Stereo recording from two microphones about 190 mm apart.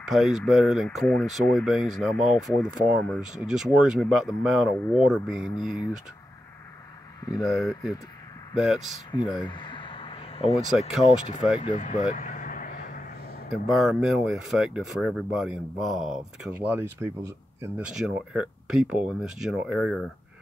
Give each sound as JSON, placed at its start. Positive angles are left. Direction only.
{"t": 0.1, "sound": "speech", "side_deg": 0}
{"t": 7.4, "sound": "speech", "side_deg": 0}
{"t": 9.1, "sound": "a sound", "side_deg": 25}
{"t": 11.6, "sound": "speech", "side_deg": 40}
{"t": 12.1, "sound": "vehicle", "side_deg": 45}
{"t": 13.7, "sound": "speech", "side_deg": 0}